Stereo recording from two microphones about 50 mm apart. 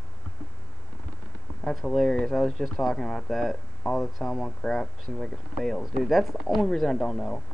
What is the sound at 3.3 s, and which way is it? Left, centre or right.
Speech, centre.